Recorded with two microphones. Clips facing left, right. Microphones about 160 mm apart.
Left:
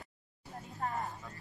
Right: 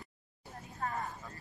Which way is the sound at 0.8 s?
20° left (ahead or behind).